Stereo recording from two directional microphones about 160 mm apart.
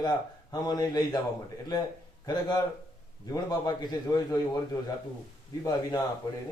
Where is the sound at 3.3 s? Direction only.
25° left (ahead or behind).